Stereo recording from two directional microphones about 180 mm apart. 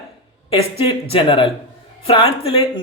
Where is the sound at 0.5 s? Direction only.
30° left (ahead or behind).